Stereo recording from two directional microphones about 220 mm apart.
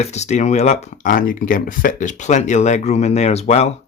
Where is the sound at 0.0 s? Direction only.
30° left (ahead or behind).